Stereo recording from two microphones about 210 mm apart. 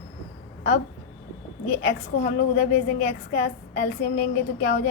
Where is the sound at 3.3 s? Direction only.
50° left (ahead or behind).